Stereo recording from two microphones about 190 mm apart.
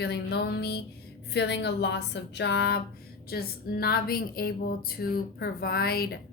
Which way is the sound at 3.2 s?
55° left (ahead or behind).